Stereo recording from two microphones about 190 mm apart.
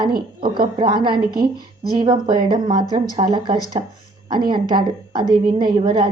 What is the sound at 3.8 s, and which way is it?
Speech, 30° right (ahead or behind).